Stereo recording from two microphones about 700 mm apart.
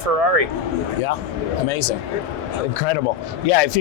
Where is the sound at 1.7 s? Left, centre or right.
Left.